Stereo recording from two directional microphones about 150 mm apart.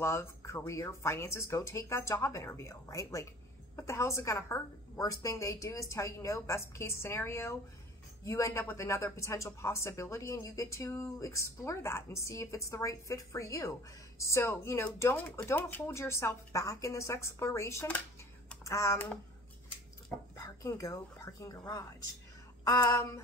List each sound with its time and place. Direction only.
0.0 s speech: 15° left (ahead or behind)
20.3 s speech: 20° left (ahead or behind)